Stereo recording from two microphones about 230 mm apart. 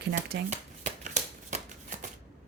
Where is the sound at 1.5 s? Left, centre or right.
Right.